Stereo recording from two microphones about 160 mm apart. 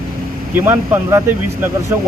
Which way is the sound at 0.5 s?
15° right (ahead or behind).